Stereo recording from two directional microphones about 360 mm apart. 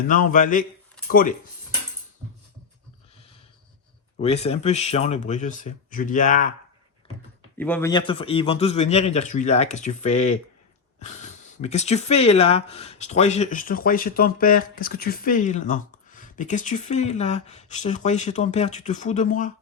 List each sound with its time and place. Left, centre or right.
0.1 s speech: left
4.2 s speech: centre
7.6 s a man's voice: centre; by 19.5 s left